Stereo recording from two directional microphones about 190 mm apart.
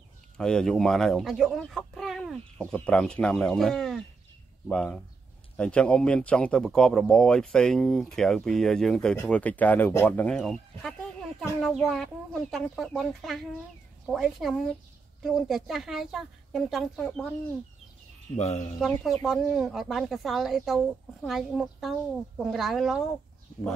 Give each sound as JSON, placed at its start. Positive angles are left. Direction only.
{"t": 0.4, "sound": "speech", "side_deg": 5}
{"t": 18.3, "sound": "speech", "side_deg": 35}
{"t": 18.8, "sound": "speech", "side_deg": 0}